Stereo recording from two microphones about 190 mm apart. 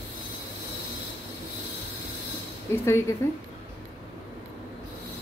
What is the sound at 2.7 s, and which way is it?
Speech, 15° left (ahead or behind).